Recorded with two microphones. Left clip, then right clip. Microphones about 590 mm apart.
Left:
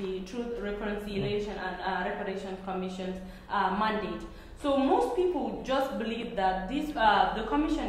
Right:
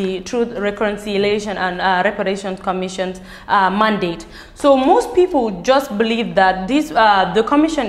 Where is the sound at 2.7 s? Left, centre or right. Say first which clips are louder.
Right 16 dB; right.